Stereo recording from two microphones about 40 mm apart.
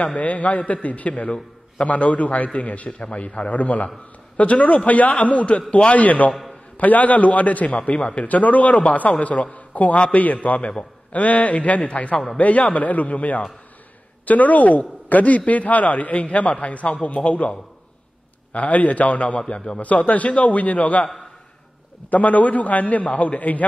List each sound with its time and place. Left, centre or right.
0.0 s a man's voice: left
22.1 s a man's voice: left